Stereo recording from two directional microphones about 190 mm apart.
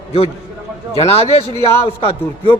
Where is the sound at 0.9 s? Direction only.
30° left (ahead or behind).